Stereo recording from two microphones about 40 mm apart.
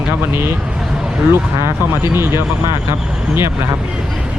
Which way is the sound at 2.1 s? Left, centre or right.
Right.